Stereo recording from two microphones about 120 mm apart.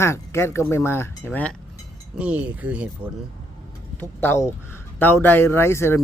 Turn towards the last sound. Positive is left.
turn(degrees=20)  # may be behind; listen again after turning